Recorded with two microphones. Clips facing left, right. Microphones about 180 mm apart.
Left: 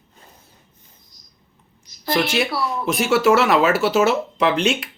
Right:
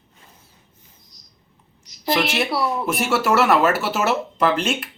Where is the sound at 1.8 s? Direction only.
25° right (ahead or behind).